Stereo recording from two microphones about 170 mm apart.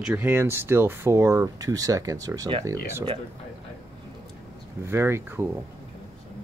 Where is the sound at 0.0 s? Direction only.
10° right (ahead or behind).